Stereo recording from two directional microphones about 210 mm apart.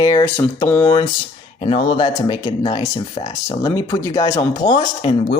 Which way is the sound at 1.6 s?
20° left (ahead or behind).